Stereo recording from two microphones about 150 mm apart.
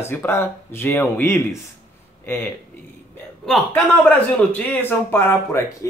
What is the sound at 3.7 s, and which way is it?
Speech, 10° left (ahead or behind).